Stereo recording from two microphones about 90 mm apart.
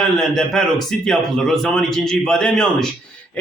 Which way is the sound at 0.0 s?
5° left (ahead or behind).